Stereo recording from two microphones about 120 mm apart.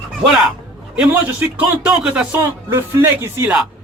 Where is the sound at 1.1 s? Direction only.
15° right (ahead or behind).